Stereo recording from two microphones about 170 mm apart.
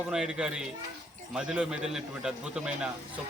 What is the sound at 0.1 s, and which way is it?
A man's voice, 5° right (ahead or behind).